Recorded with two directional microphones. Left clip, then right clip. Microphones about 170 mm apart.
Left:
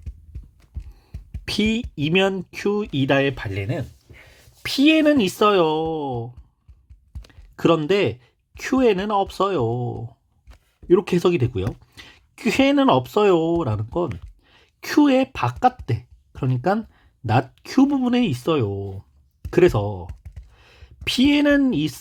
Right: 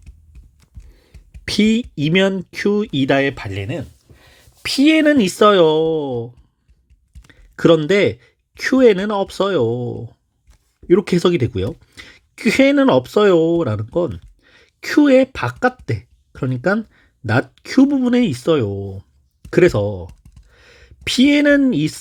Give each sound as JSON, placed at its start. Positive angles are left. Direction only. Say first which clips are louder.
{"t": 0.9, "sound": "speech", "louder": "left 1 dB", "side_deg": -25}
{"t": 14.4, "sound": "a sound", "louder": "right 5 dB", "side_deg": -25}
{"t": 14.8, "sound": "speech", "louder": "right 5 dB", "side_deg": -15}